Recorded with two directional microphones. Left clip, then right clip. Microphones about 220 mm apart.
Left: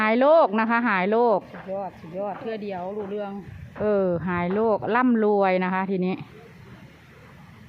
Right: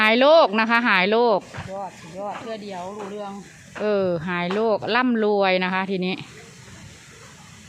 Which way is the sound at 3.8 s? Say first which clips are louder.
Right 1 dB; 5° right (ahead or behind).